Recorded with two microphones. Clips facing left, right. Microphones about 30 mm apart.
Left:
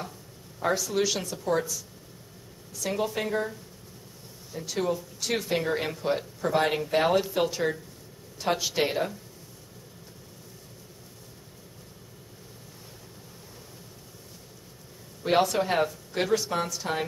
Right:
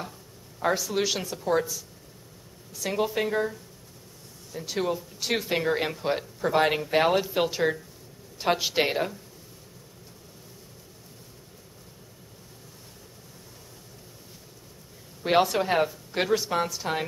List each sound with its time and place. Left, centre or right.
0.6 s speech: centre
4.6 s speech: centre
15.2 s speech: centre